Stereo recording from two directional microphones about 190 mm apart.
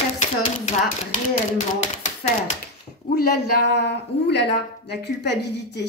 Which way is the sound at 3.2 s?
55° left (ahead or behind).